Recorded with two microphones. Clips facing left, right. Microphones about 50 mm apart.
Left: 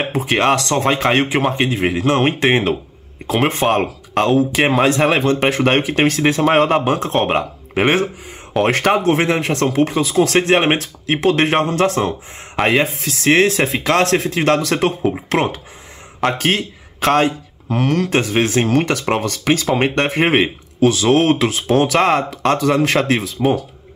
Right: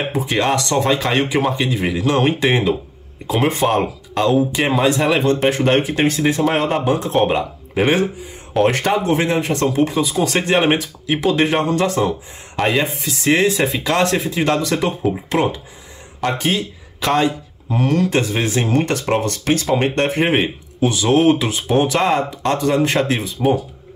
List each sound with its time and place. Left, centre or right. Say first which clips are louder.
0.1 s speech: left 3 dB; left
3.3 s speech: left 1 dB; left
5.2 s speech: even; left
7.2 s speech: left 1 dB; left
8.5 s speech: left 1 dB; left
12.6 s speech: left 2 dB; left
19.1 s speech: left 1 dB; left
19.7 s speech: even; left